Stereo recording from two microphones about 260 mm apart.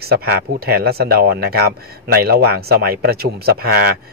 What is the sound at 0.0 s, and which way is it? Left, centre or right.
Speech, right.